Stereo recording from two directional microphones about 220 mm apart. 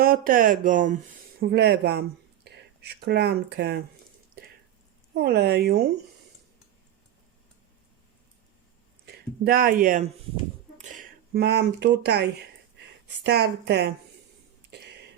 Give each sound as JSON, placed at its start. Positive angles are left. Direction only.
{"t": 0.0, "sound": "speech", "side_deg": -40}
{"t": 1.4, "sound": "speech", "side_deg": -45}
{"t": 5.1, "sound": "speech", "side_deg": -45}
{"t": 9.0, "sound": "speech", "side_deg": -45}